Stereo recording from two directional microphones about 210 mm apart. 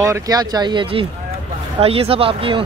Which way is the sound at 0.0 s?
15° right (ahead or behind).